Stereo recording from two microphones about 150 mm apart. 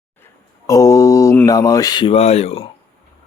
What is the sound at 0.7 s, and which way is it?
Mantra, 20° left (ahead or behind).